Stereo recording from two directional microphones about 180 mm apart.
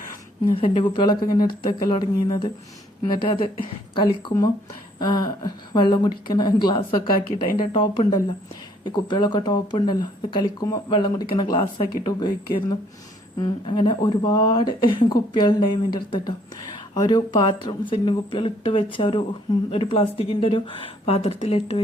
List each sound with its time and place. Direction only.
0.5 s speech: 30° left (ahead or behind)
13.4 s a woman's voice: 25° left (ahead or behind)